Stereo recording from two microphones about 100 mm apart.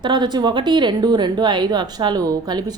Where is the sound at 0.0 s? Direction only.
50° right (ahead or behind).